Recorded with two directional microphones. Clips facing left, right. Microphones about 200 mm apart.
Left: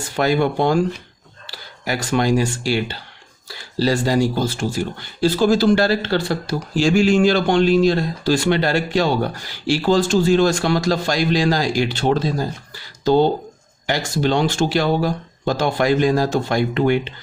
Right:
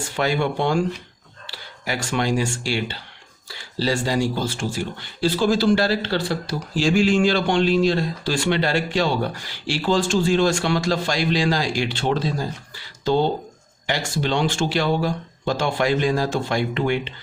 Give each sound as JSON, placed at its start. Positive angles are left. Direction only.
{"t": 0.2, "sound": "speech", "side_deg": 40}
{"t": 13.8, "sound": "speech", "side_deg": 45}